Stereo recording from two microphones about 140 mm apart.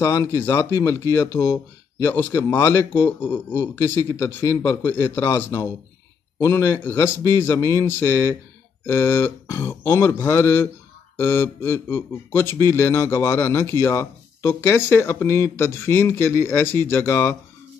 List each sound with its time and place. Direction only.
0.0 s a man's voice: 20° left (ahead or behind)
6.4 s a man's voice: 20° left (ahead or behind)